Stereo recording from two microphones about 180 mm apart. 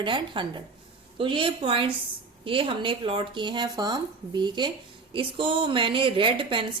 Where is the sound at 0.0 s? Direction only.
25° right (ahead or behind).